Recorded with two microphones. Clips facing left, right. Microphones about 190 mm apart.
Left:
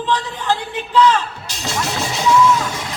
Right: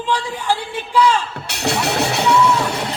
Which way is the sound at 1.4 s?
65° right (ahead or behind).